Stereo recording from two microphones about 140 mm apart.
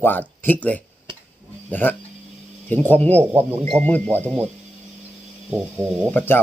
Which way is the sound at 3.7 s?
10° left (ahead or behind).